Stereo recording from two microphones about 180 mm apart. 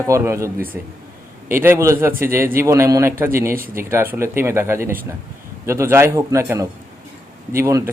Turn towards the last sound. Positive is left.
turn(degrees=-15)  # may be behind; listen again after turning